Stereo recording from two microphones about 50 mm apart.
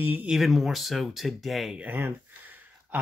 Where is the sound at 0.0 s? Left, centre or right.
Right.